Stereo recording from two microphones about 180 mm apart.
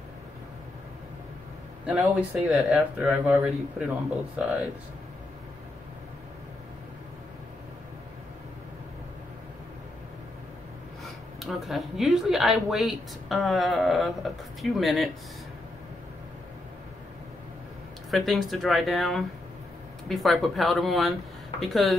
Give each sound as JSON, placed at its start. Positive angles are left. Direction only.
{"t": 1.9, "sound": "speech", "side_deg": -5}
{"t": 11.4, "sound": "speech", "side_deg": 0}
{"t": 18.1, "sound": "speech", "side_deg": 0}